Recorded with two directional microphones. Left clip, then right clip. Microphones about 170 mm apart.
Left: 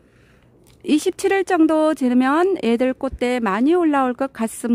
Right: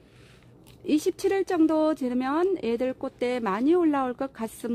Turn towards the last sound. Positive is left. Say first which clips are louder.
# left 8 dB
turn(degrees=35)  # may be behind; listen again after turning